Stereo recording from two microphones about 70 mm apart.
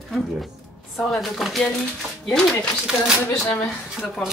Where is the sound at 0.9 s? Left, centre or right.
Centre.